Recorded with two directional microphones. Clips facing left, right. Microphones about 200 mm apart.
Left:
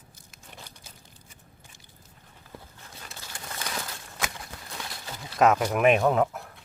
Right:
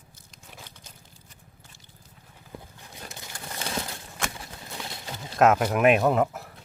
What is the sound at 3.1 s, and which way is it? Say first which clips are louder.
Crumpling: even; 20° right (ahead or behind).